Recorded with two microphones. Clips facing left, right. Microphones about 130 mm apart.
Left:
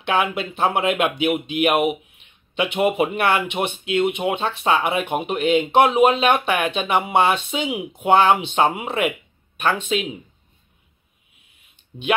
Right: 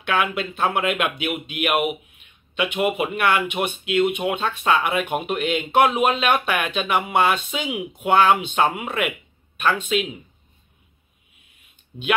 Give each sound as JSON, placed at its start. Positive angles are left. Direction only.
{"t": 0.0, "sound": "speech", "side_deg": 30}